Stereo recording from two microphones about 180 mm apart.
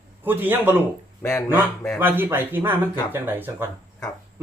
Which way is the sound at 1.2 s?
15° left (ahead or behind).